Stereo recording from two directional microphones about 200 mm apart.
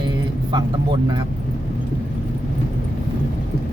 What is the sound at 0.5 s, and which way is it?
Speech, 20° right (ahead or behind).